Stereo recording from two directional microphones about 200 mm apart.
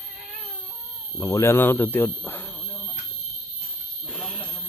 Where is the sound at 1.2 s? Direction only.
15° left (ahead or behind).